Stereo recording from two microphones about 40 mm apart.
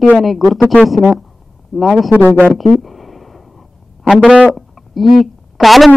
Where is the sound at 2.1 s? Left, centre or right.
Right.